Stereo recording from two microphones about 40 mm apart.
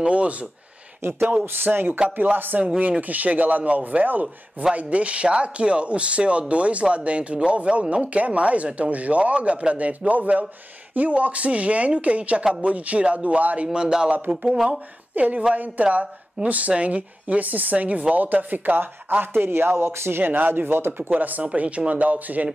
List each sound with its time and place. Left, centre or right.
0.0 s speech: right
1.4 s a man's voice: right
13.7 s a man's voice: centre
15.1 s a man's voice: right
19.2 s speech: right
21.1 s a man's voice: right